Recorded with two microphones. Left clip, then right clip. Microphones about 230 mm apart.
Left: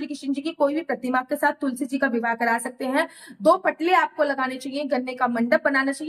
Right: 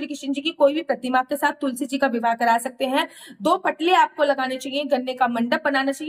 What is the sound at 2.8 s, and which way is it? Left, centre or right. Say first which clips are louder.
Speech: right 2 dB; centre.